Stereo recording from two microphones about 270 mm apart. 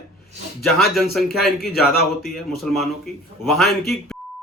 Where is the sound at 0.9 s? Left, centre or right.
Centre.